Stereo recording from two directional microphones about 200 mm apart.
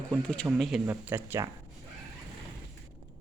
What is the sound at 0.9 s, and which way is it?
Speech, 15° right (ahead or behind).